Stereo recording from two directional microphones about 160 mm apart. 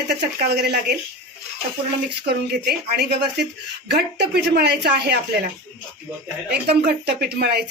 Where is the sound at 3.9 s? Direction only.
90° right.